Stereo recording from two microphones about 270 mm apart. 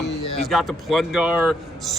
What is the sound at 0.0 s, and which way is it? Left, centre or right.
Speech, centre.